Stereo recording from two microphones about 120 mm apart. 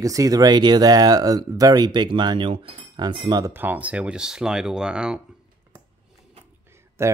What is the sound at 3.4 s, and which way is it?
Speech, 15° right (ahead or behind).